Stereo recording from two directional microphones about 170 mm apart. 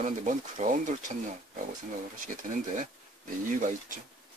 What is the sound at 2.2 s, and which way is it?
Speech, 50° right (ahead or behind).